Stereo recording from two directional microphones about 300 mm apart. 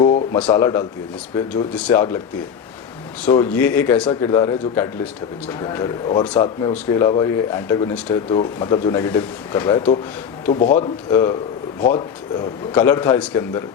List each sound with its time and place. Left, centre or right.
0.4 s speech: centre
3.2 s speech: centre; by 10.8 s left
10.8 s speech: centre